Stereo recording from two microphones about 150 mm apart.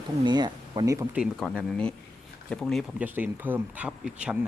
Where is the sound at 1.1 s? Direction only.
Centre (ahead or behind).